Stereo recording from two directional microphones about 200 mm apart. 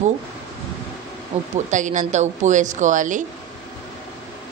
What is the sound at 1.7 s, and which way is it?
A woman's voice, 40° right (ahead or behind).